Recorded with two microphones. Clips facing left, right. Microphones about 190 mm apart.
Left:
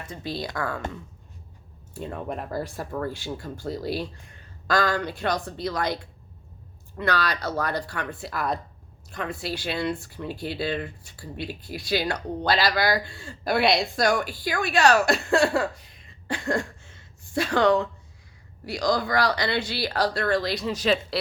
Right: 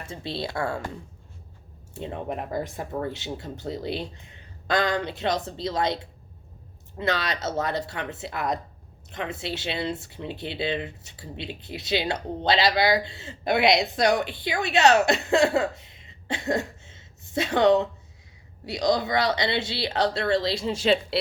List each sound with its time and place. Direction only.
0.0 s speech: 25° right (ahead or behind)
2.0 s speech: 25° right (ahead or behind)